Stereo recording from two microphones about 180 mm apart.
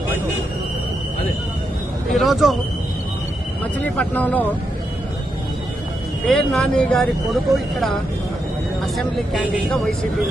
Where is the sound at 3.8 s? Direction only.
10° left (ahead or behind).